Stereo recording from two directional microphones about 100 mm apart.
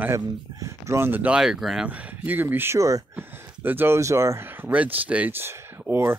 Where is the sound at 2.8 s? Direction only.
35° right (ahead or behind).